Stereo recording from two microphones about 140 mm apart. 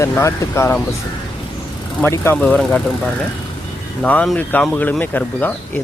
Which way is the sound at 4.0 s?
5° left (ahead or behind).